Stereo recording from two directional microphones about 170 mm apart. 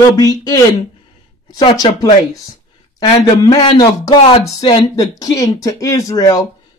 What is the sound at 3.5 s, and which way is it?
Speech, 25° left (ahead or behind).